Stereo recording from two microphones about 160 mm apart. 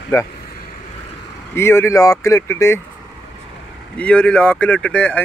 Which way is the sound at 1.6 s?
15° left (ahead or behind).